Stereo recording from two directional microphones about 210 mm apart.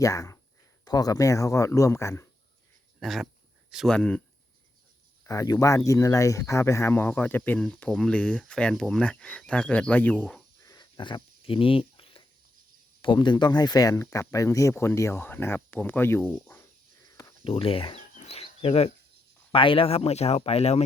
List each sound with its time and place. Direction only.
0.0 s speech: 15° left (ahead or behind)
3.0 s dog: centre (ahead or behind)
3.7 s speech: centre (ahead or behind)
5.2 s speech: 15° left (ahead or behind)
10.6 s a sound: 20° left (ahead or behind)
13.0 s speech: 20° left (ahead or behind)
17.1 s a sound: 15° left (ahead or behind)
17.4 s chicken: 25° left (ahead or behind)
19.5 s speech: 25° left (ahead or behind)